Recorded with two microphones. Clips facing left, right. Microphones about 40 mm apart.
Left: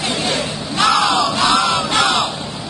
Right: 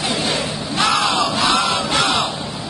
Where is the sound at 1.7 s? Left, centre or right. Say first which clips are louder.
Left 2 dB; left.